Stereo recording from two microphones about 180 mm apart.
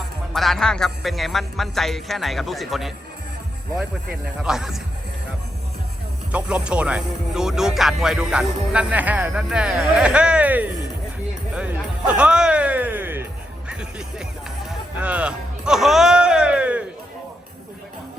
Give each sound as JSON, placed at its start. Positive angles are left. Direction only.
{"t": 0.3, "sound": "speech", "side_deg": 0}
{"t": 4.4, "sound": "speech", "side_deg": 0}
{"t": 6.3, "sound": "speech", "side_deg": -5}
{"t": 11.5, "sound": "music", "side_deg": -5}